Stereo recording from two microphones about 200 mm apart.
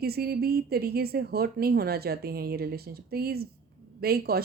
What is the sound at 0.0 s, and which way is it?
Speech, 50° right (ahead or behind).